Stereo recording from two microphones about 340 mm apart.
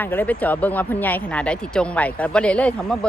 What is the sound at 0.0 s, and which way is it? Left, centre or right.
Speech, centre.